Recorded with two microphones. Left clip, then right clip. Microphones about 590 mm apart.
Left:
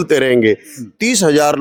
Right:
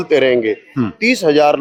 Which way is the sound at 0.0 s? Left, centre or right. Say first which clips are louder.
Left 1 dB; left.